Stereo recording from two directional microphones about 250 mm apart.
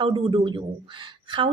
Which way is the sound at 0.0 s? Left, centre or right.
Centre.